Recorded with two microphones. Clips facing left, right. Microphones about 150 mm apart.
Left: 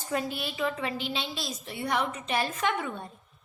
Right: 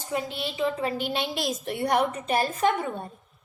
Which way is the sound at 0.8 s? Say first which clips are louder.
Right 5 dB; 50° right (ahead or behind).